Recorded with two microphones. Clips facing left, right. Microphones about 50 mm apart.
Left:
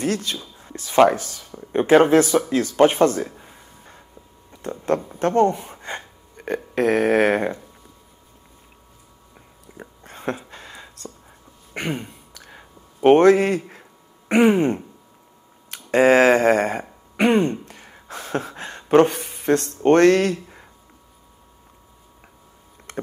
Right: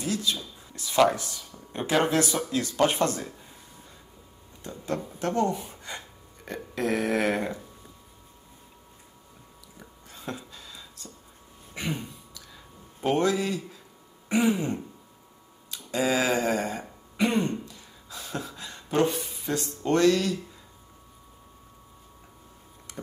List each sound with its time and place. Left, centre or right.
0.0 s speech: left
0.7 s speech: left
4.5 s speech: left
9.8 s a sound: left
14.3 s speech: left
15.7 s a sound: left